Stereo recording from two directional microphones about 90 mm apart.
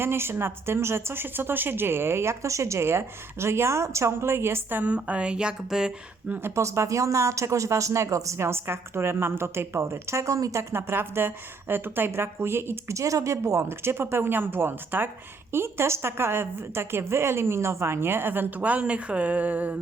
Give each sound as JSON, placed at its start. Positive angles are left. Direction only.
{"t": 0.0, "sound": "speech", "side_deg": -25}
{"t": 6.5, "sound": "speech", "side_deg": -35}